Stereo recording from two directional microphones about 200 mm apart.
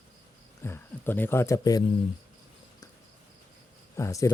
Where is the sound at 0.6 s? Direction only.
10° left (ahead or behind).